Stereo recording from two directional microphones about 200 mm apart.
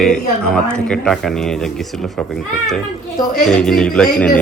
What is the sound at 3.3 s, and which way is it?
A man's voice, 5° left (ahead or behind).